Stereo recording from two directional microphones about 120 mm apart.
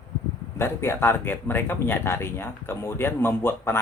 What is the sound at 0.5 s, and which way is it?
Speech, 20° left (ahead or behind).